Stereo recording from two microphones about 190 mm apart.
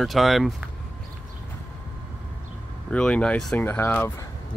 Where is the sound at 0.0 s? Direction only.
Centre (ahead or behind).